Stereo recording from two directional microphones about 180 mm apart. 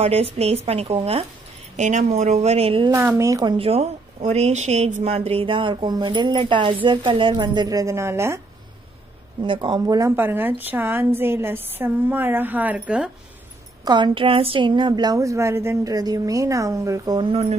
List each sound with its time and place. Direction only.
0.0 s a woman's voice: 35° right (ahead or behind)
2.9 s a woman's voice: 15° right (ahead or behind)
3.5 s speech: 35° right (ahead or behind); by 8.4 s 15° right (ahead or behind)
9.4 s a woman's voice: 25° right (ahead or behind); by 13.1 s 5° right (ahead or behind)
13.8 s speech: 25° right (ahead or behind)